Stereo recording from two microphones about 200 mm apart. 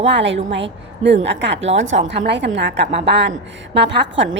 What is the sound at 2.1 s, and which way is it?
A woman's voice, 60° right (ahead or behind).